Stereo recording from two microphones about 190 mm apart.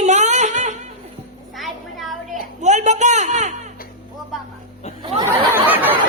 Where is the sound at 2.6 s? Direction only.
35° right (ahead or behind).